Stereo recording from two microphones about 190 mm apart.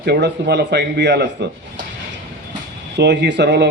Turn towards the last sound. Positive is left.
turn(degrees=-60)  # may be behind; listen again after turning